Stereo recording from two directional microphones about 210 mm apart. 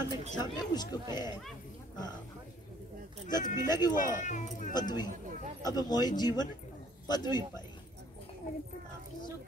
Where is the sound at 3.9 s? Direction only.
40° left (ahead or behind).